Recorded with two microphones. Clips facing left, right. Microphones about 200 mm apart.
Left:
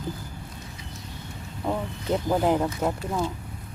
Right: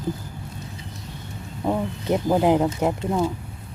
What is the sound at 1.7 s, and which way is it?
Speech, 15° right (ahead or behind).